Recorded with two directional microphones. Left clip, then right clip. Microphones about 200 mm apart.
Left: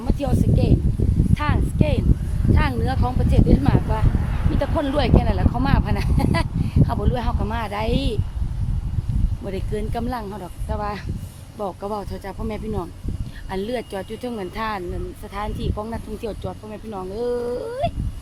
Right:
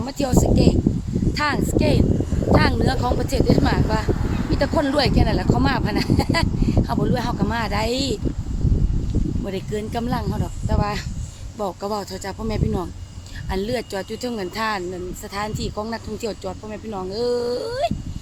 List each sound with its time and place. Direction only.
0.0 s speech: 20° right (ahead or behind)
9.5 s speech: 10° right (ahead or behind)